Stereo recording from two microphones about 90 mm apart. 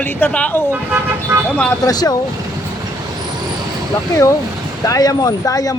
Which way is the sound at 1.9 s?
45° left (ahead or behind).